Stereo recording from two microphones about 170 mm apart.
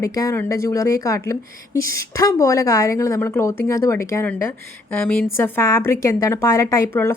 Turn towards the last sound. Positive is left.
turn(degrees=15)  # may be behind; listen again after turning